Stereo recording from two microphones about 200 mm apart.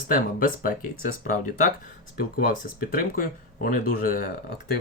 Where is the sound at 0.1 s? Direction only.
45° left (ahead or behind).